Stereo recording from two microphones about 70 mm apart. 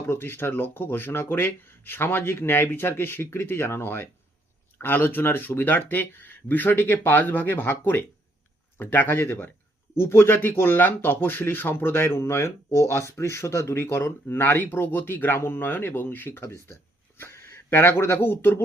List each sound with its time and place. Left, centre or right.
0.1 s speech: left